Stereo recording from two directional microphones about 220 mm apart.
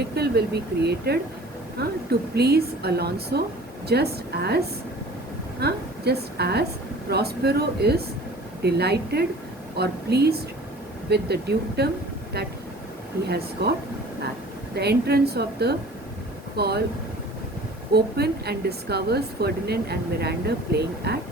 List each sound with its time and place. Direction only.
0.1 s speech: 45° right (ahead or behind)
13.2 s speech: 45° right (ahead or behind)
14.8 s speech: 45° right (ahead or behind)
17.9 s speech: 45° right (ahead or behind)